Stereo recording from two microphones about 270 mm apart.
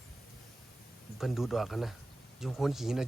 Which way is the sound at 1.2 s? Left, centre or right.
Centre.